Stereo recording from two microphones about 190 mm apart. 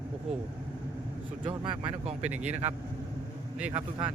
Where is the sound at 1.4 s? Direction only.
25° right (ahead or behind).